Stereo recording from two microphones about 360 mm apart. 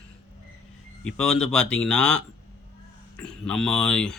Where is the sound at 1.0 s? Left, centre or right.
Centre.